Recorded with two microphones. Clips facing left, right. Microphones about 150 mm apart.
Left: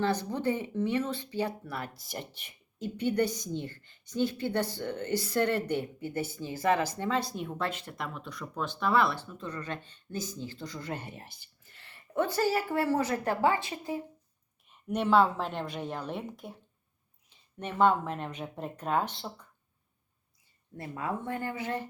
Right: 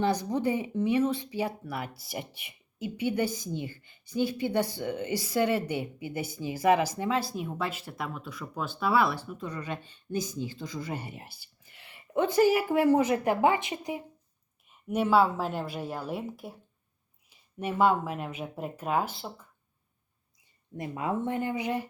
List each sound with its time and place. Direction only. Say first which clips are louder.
0.0 s speech: right 2 dB; 15° right (ahead or behind)
14.7 s a woman's voice: right 1 dB; 5° right (ahead or behind)
20.7 s speech: right 4 dB; 15° right (ahead or behind)